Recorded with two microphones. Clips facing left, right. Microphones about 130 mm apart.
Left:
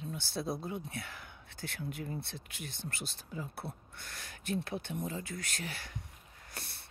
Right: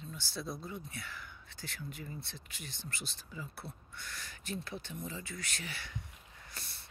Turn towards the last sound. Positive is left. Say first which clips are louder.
# left 3 dB
turn(degrees=55)  # may be behind; listen again after turning